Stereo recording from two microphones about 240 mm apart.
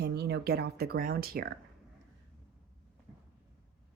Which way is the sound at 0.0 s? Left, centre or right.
Right.